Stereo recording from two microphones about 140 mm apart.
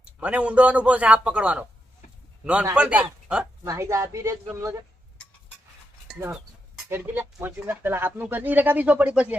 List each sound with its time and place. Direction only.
0.0 s a man's voice: 10° right (ahead or behind)
3.6 s a man's voice: 20° right (ahead or behind)
6.8 s speech: 15° right (ahead or behind)